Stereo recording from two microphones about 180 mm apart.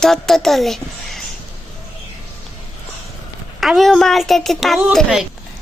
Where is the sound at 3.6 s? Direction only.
Centre (ahead or behind).